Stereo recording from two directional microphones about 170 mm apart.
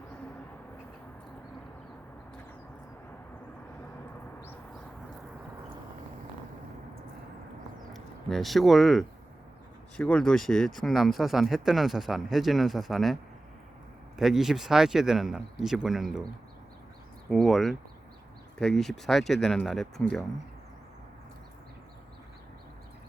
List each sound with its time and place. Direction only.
7.9 s speech: centre (ahead or behind)
14.2 s speech: centre (ahead or behind)
17.2 s speech: 5° left (ahead or behind)